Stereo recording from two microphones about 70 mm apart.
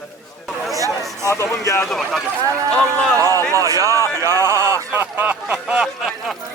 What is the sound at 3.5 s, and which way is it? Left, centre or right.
Speech, right.